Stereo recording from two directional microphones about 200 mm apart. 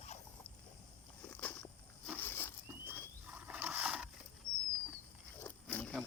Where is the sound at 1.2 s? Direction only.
10° left (ahead or behind).